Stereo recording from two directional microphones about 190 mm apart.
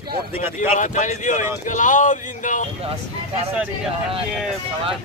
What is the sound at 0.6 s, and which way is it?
Speech, 40° left (ahead or behind).